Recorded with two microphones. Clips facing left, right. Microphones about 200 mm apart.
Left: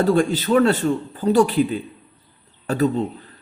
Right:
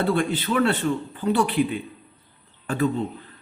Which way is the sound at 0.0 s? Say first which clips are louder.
Left 5 dB; 40° left (ahead or behind).